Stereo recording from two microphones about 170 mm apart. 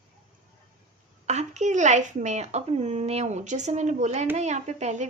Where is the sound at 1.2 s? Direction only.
40° right (ahead or behind).